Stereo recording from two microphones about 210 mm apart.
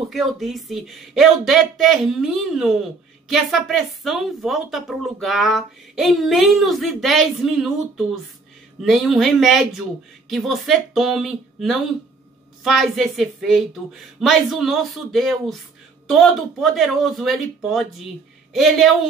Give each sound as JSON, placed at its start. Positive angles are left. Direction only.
{"t": 0.1, "sound": "speech", "side_deg": 0}